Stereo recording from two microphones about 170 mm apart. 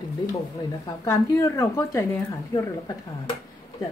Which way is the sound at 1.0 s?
15° left (ahead or behind).